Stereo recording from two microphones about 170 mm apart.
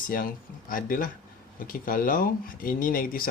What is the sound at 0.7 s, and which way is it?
Speech, 55° left (ahead or behind).